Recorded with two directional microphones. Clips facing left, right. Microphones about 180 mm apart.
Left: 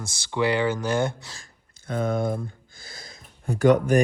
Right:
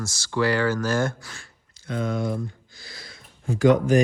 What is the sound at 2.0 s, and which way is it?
Speech, 55° left (ahead or behind).